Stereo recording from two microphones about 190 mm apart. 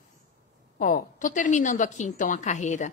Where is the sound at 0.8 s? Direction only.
45° left (ahead or behind).